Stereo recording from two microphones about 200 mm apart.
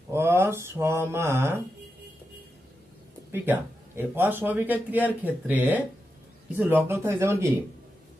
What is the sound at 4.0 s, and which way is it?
A man's voice, 10° right (ahead or behind).